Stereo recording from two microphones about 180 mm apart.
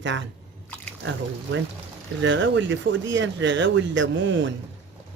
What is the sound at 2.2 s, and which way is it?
Speech, 90° right.